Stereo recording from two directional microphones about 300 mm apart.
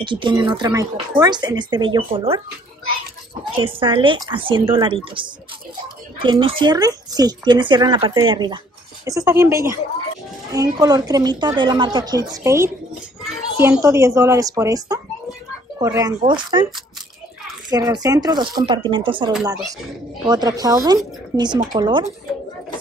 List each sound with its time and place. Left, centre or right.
0.0 s speech: centre
3.5 s a child's voice: centre
17.6 s speech: centre